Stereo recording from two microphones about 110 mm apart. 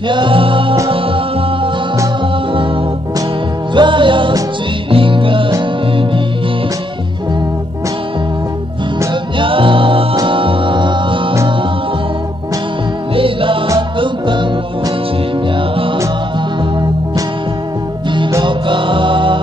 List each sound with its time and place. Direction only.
0.1 s music: 50° right (ahead or behind)
3.7 s music: 45° right (ahead or behind)
9.4 s music: 50° right (ahead or behind)
13.1 s music: 55° right (ahead or behind)
18.4 s music: 50° right (ahead or behind)